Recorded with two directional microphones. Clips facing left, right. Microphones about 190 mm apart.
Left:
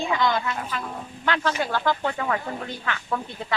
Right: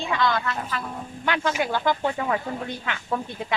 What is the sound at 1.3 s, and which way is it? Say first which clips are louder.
Speech: even; 10° right (ahead or behind).